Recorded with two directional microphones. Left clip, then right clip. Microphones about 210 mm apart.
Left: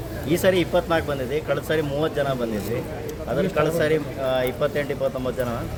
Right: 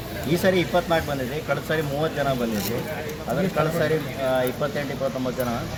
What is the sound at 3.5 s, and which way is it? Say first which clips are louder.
Speech: left 2 dB; 25° left (ahead or behind).